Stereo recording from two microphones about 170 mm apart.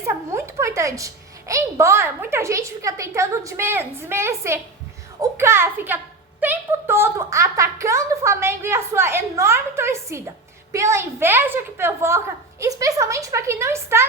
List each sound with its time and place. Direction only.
0.0 s a woman's voice: 15° right (ahead or behind)